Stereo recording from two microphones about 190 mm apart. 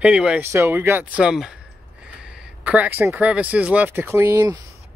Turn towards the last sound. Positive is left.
turn(degrees=-10)  # may be behind; listen again after turning